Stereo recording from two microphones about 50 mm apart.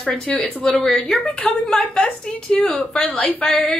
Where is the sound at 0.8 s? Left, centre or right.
Left.